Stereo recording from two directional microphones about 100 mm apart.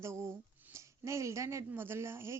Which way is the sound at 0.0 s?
25° right (ahead or behind).